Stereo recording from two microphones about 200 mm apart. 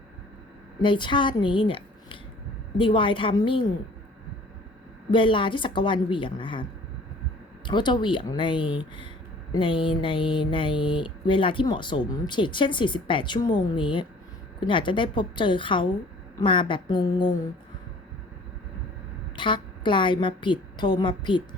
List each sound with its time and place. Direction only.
0.8 s speech: 25° left (ahead or behind)
2.7 s mantra: 25° left (ahead or behind)
5.1 s mantra: 25° left (ahead or behind)
7.7 s mantra: 20° left (ahead or behind)
19.4 s a woman's voice: 25° left (ahead or behind)